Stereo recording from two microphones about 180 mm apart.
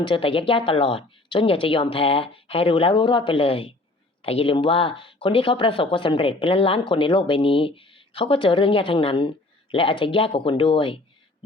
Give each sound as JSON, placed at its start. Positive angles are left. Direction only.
{"t": 0.0, "sound": "a woman's voice", "side_deg": 30}